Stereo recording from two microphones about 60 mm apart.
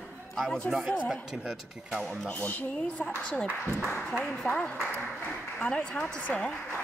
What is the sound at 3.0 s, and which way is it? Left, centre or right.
A woman's voice, centre.